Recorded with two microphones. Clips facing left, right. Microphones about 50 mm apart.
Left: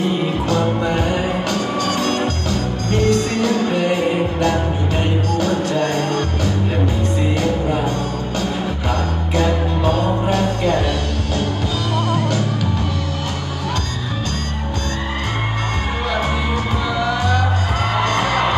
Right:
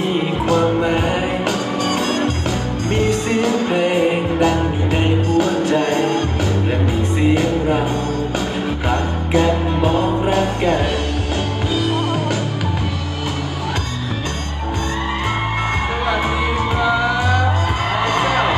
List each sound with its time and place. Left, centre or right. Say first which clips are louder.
0.5 s music: right 4 dB; centre
17.0 s music: right 1 dB; centre